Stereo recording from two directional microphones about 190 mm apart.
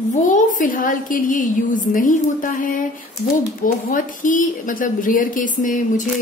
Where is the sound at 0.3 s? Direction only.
45° left (ahead or behind).